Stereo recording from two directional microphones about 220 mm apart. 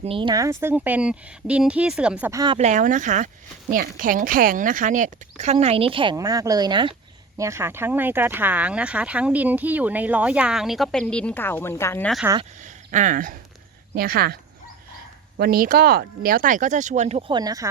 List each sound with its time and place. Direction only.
0.0 s speech: 25° right (ahead or behind); by 2.4 s 5° right (ahead or behind)
2.4 s speech: 25° right (ahead or behind); by 12.2 s 5° left (ahead or behind)
12.4 s speech: 35° right (ahead or behind)
15.4 s speech: 40° right (ahead or behind); by 17.7 s 15° right (ahead or behind)